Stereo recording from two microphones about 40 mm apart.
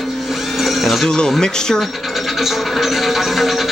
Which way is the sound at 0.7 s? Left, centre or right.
Centre.